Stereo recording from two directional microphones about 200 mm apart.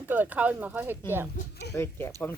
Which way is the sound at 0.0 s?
10° right (ahead or behind).